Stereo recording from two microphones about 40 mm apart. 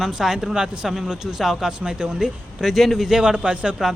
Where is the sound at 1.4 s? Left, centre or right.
Centre.